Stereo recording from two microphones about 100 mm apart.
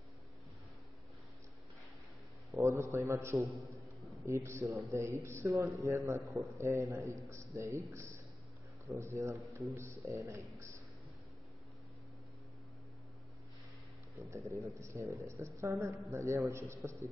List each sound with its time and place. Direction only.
2.5 s a man's voice: 30° right (ahead or behind)
4.0 s a sound: centre (ahead or behind)
4.3 s a man's voice: 30° right (ahead or behind)
14.3 s a man's voice: 30° right (ahead or behind)